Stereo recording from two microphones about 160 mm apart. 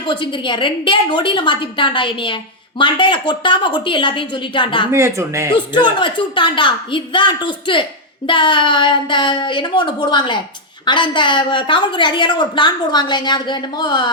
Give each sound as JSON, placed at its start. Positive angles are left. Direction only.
{"t": 0.1, "sound": "a woman's voice", "side_deg": 30}
{"t": 4.9, "sound": "speech", "side_deg": -15}
{"t": 5.5, "sound": "a woman's voice", "side_deg": 30}